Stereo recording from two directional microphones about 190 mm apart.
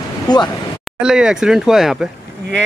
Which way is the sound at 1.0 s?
5° right (ahead or behind).